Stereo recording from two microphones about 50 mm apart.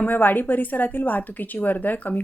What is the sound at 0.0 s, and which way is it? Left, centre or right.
A woman's voice, left.